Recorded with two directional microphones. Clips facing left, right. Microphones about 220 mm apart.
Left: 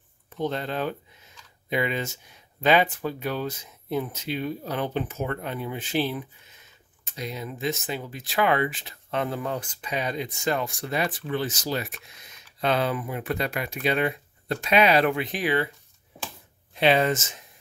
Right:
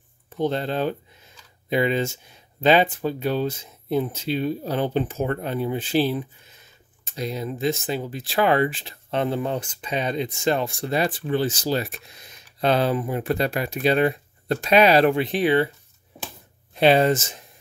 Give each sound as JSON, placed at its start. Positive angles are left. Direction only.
{"t": 0.4, "sound": "speech", "side_deg": -30}
{"t": 16.7, "sound": "speech", "side_deg": -35}